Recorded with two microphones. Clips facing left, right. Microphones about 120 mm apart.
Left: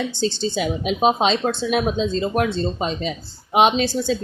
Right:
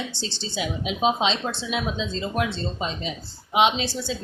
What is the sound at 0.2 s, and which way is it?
A woman's voice, 50° left (ahead or behind).